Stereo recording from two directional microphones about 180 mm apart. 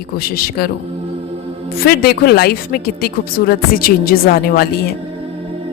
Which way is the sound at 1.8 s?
60° left (ahead or behind).